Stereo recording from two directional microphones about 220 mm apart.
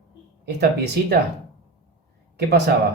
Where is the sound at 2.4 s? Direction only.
50° right (ahead or behind).